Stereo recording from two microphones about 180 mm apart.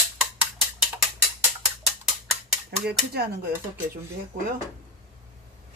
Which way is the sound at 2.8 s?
60° right (ahead or behind).